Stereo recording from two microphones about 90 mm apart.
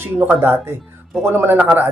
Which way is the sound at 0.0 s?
25° right (ahead or behind).